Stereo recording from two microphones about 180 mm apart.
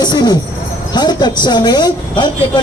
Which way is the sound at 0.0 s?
20° left (ahead or behind).